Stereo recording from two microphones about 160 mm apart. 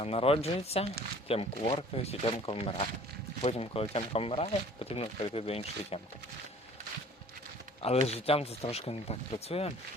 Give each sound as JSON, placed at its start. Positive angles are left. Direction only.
{"t": 0.0, "sound": "speech", "side_deg": 35}
{"t": 7.8, "sound": "speech", "side_deg": 40}